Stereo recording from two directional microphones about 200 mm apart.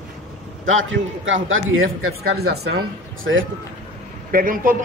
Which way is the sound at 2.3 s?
55° right (ahead or behind).